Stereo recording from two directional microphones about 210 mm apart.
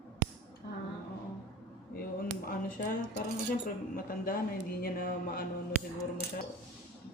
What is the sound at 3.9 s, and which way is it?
Speech, 40° left (ahead or behind).